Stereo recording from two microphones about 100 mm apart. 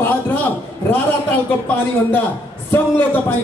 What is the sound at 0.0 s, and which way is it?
Speech, 20° left (ahead or behind).